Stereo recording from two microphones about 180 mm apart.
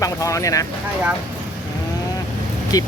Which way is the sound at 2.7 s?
20° left (ahead or behind).